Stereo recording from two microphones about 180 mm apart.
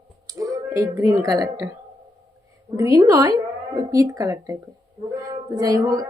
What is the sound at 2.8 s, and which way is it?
A woman's voice, 20° right (ahead or behind).